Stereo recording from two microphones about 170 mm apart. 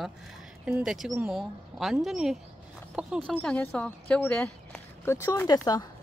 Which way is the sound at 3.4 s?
10° left (ahead or behind).